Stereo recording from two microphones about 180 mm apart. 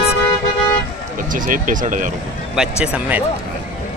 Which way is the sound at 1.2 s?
50° right (ahead or behind).